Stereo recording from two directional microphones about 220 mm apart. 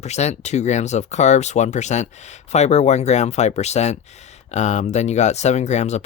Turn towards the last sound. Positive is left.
turn(degrees=30)  # may be behind; listen again after turning